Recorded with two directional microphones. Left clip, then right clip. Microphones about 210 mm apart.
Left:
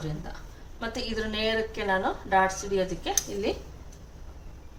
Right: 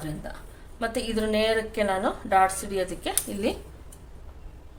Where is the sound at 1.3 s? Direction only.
50° right (ahead or behind).